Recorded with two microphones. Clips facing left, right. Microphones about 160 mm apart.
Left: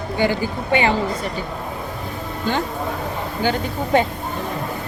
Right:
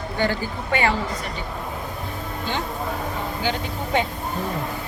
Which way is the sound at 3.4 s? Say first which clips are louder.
Left 8 dB; 45° left (ahead or behind).